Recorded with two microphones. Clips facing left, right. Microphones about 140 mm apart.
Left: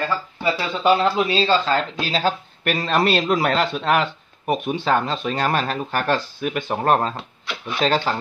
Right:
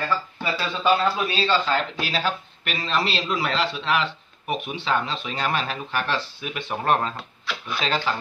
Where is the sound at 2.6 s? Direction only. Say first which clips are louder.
Left 7 dB; 50° left (ahead or behind).